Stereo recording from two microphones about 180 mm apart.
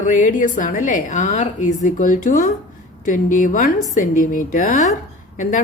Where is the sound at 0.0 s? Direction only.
45° left (ahead or behind).